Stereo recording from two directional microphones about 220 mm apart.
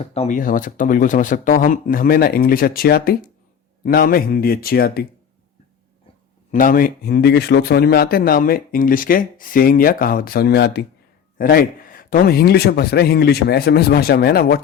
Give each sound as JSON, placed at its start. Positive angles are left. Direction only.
{"t": 0.0, "sound": "speech", "side_deg": 30}
{"t": 6.5, "sound": "speech", "side_deg": 40}